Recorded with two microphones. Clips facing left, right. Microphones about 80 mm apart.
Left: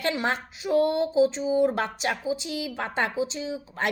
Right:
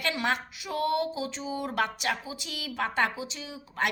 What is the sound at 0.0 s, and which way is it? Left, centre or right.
Speech, left.